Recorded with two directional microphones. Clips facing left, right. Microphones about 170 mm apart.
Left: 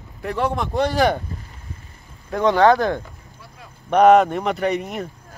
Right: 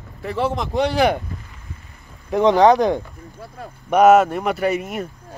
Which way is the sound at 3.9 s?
5° right (ahead or behind).